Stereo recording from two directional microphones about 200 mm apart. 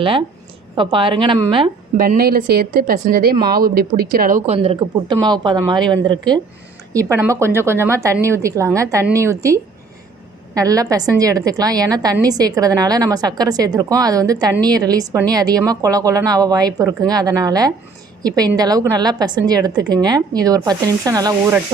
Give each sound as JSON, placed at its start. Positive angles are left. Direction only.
{"t": 0.8, "sound": "a woman's voice", "side_deg": -25}
{"t": 2.0, "sound": "a woman's voice", "side_deg": -45}